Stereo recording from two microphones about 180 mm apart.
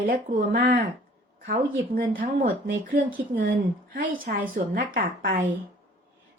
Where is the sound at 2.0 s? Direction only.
50° right (ahead or behind).